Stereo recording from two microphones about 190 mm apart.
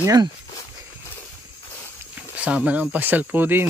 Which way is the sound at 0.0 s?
20° right (ahead or behind).